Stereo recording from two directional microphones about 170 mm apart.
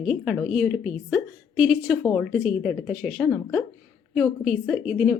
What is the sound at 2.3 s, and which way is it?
A woman's voice, centre (ahead or behind).